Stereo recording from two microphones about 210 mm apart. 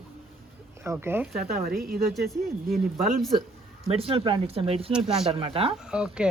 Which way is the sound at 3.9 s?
25° right (ahead or behind).